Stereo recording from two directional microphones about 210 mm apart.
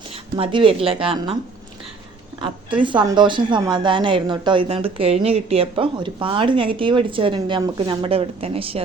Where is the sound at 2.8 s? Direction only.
20° right (ahead or behind).